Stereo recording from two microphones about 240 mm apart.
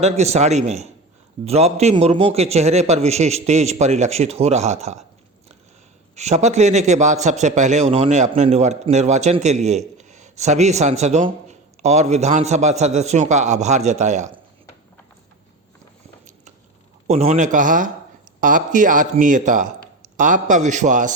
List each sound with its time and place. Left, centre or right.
0.0 s a man's voice: right
6.1 s a man's voice: right
17.1 s speech: right